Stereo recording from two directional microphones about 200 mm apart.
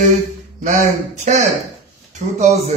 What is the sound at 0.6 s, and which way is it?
Speech, 40° right (ahead or behind).